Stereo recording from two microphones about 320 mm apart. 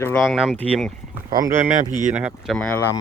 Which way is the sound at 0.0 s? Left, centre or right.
Centre.